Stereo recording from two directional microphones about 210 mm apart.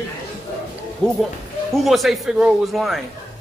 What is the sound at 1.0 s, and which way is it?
A man's voice, 5° left (ahead or behind).